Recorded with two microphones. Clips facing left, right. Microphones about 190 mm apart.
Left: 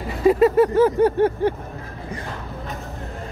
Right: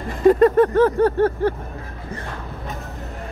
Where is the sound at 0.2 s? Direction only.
5° left (ahead or behind).